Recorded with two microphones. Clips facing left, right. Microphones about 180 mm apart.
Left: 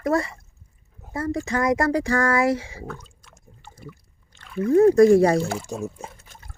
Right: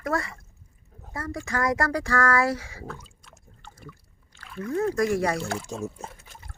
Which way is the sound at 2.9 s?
5° right (ahead or behind).